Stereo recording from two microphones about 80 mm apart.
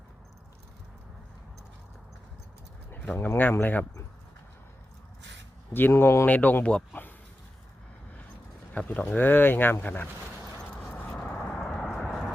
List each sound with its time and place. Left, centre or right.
2.9 s speech: left
5.9 s speech: left
6.2 s speech: centre
8.7 s speech: centre
11.1 s vehicle: centre
11.9 s horse: centre